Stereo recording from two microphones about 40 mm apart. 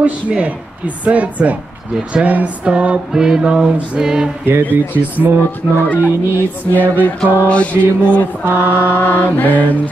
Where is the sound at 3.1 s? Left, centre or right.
Centre.